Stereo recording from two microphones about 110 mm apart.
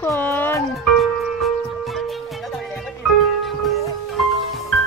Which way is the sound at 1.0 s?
Centre (ahead or behind).